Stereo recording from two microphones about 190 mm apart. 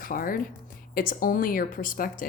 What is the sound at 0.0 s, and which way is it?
A woman's voice, 45° left (ahead or behind).